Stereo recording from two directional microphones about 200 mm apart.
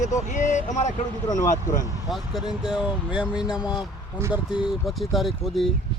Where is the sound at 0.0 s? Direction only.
40° left (ahead or behind).